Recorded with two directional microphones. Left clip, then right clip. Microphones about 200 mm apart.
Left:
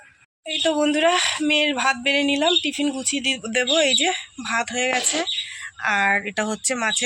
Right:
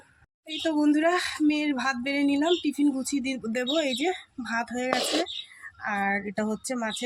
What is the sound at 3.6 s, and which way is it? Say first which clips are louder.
Speech: left 8 dB; centre (ahead or behind).